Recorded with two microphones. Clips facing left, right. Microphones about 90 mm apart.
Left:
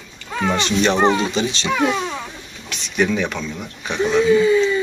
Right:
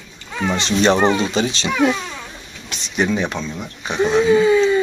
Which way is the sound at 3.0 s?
25° right (ahead or behind).